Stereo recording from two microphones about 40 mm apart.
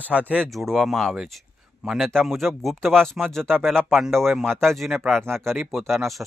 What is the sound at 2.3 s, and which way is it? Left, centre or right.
Speech, centre.